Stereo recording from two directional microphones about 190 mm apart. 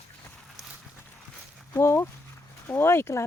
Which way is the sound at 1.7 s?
15° left (ahead or behind).